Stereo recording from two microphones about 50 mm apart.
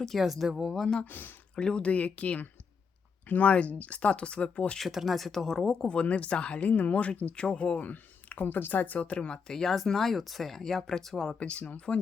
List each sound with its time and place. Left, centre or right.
0.2 s speech: centre
0.7 s speech: centre
1.0 s speech: left
1.5 s speech: centre
4.9 s speech: centre; by 9.4 s left
9.5 s speech: centre
11.3 s speech: left